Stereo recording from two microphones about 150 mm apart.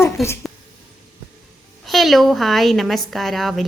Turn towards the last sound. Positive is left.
turn(degrees=0)  # may be behind; listen again after turning